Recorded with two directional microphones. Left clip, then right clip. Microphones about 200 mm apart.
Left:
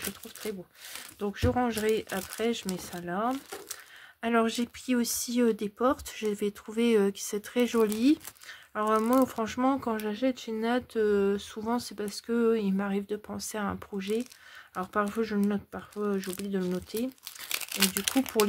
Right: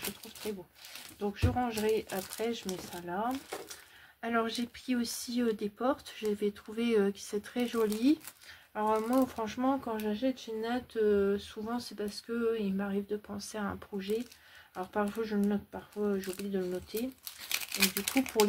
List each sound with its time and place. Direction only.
1.2 s speech: 50° left (ahead or behind)
1.9 s speech: 40° left (ahead or behind)